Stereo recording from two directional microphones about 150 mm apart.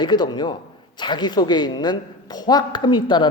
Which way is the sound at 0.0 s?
30° left (ahead or behind).